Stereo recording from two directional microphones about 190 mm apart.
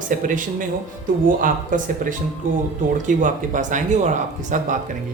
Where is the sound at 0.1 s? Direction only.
45° right (ahead or behind).